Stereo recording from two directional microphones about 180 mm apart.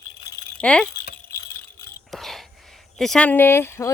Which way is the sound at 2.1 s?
Centre (ahead or behind).